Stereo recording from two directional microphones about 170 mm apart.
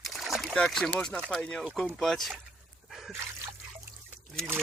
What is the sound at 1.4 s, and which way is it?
Speech, 5° left (ahead or behind).